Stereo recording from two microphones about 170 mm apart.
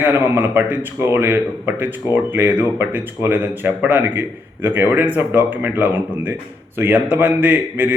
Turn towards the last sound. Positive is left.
turn(degrees=-10)  # may be behind; listen again after turning